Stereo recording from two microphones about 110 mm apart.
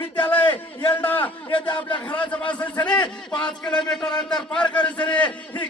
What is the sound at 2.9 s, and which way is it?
Speech, 40° left (ahead or behind).